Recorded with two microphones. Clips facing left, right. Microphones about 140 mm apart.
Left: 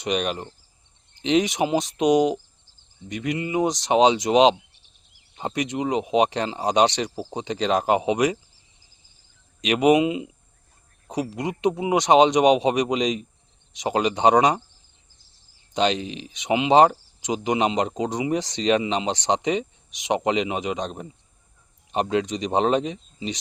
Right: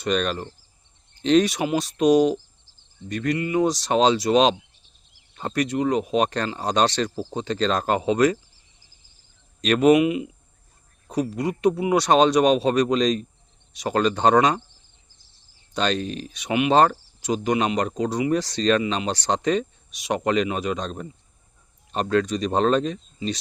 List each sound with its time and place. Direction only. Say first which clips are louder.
0.0 s cricket: right 1 dB; 15° left (ahead or behind)
9.6 s speech: right 1 dB; 15° left (ahead or behind)
11.1 s cricket: right 2 dB; 15° left (ahead or behind)
15.7 s cricket: left 1 dB; 15° left (ahead or behind)